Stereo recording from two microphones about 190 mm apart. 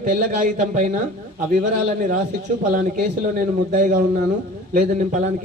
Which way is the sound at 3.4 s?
45° right (ahead or behind).